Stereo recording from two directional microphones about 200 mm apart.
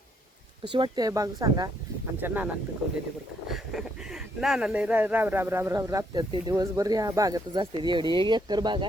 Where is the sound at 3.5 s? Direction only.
Centre (ahead or behind); by 8.8 s 20° right (ahead or behind).